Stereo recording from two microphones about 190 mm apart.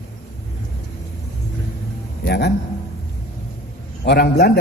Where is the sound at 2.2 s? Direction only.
60° left (ahead or behind).